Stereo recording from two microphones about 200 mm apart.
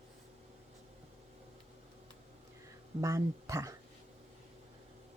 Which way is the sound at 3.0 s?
15° right (ahead or behind).